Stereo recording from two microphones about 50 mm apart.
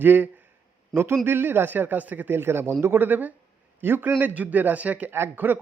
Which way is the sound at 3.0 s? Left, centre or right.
Right.